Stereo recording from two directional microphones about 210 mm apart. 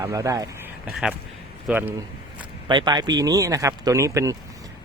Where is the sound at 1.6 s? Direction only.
10° right (ahead or behind).